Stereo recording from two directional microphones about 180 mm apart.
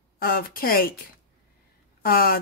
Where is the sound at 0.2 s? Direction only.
55° left (ahead or behind).